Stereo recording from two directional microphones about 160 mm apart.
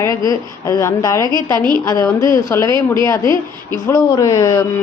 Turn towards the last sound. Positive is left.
turn(degrees=20)  # may be behind; listen again after turning